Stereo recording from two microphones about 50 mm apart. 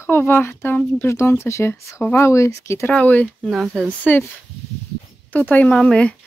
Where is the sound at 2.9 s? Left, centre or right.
Left.